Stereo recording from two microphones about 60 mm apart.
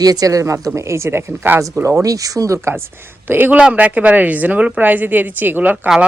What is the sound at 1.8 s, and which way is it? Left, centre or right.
Speech, right.